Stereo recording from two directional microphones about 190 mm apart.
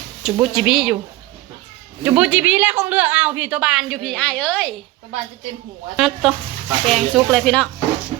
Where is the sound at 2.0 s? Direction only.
5° right (ahead or behind).